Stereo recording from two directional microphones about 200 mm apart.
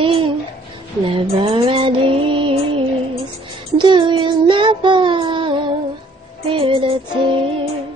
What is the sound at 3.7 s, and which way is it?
Child singing, 25° right (ahead or behind).